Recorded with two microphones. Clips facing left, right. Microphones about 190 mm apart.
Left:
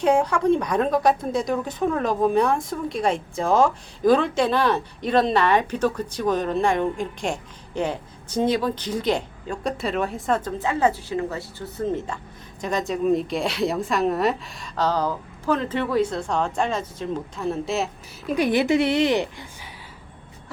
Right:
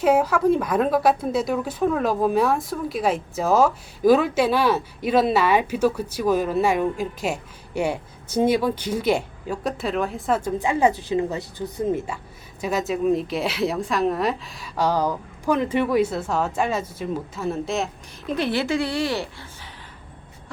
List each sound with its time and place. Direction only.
0.0 s a woman's voice: 5° right (ahead or behind)
18.3 s a woman's voice: 15° left (ahead or behind)